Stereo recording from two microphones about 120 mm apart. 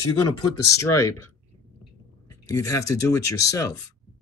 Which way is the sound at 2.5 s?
25° left (ahead or behind).